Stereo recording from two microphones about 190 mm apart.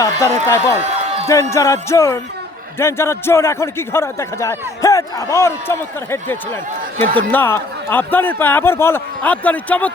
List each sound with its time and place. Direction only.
0.0 s a man's voice: 15° left (ahead or behind)
0.8 s a sound: 35° right (ahead or behind)
1.3 s a man's voice: 15° left (ahead or behind)